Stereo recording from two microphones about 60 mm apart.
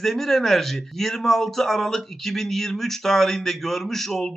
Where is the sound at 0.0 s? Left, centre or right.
Centre.